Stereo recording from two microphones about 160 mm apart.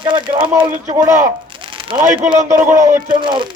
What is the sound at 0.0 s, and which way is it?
Speech, 30° right (ahead or behind).